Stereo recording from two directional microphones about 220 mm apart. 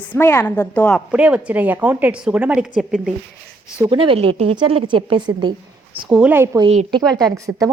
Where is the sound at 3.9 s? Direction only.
25° right (ahead or behind).